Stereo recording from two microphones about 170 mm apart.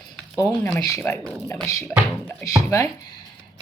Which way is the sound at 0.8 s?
20° left (ahead or behind).